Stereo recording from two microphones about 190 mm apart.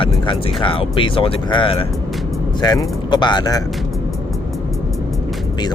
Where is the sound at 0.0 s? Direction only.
25° left (ahead or behind).